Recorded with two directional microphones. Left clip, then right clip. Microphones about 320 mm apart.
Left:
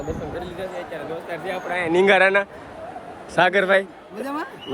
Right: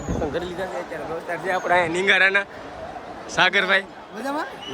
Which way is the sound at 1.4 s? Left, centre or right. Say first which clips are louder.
Right 7 dB; right.